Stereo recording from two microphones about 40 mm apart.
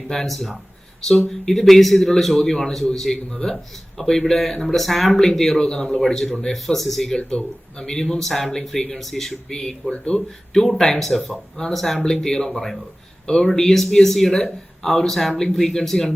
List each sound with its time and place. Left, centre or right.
0.1 s a man's voice: centre
3.3 s a man's voice: centre
5.5 s a man's voice: left
7.2 s a man's voice: centre
9.9 s speech: left
10.5 s a man's voice: centre
13.2 s speech: centre
13.5 s a man's voice: centre